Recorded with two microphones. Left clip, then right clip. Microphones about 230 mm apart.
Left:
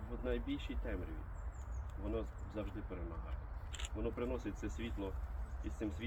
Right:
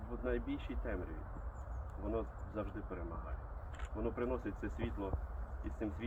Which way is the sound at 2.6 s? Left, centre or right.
Left.